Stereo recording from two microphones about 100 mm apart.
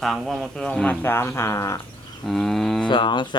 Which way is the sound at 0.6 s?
10° left (ahead or behind).